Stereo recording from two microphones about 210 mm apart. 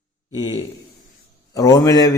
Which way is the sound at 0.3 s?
20° left (ahead or behind).